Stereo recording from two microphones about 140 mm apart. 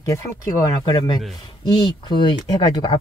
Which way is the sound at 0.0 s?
20° left (ahead or behind).